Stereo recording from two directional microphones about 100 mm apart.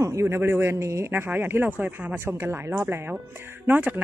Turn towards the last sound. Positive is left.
turn(degrees=-20)  # may be behind; listen again after turning